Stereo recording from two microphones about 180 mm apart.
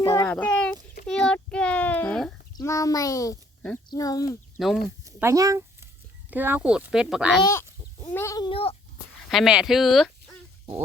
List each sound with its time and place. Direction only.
0.0 s a sound: 15° left (ahead or behind)
2.6 s a child's voice: 20° left (ahead or behind)
4.6 s speech: centre (ahead or behind)
5.0 s speech: 15° right (ahead or behind)
7.4 s goat: 15° left (ahead or behind)
8.4 s speech: 30° left (ahead or behind)
9.3 s speech: 5° right (ahead or behind)